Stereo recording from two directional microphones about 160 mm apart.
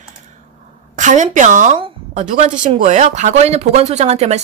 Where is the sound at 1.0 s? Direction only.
50° right (ahead or behind).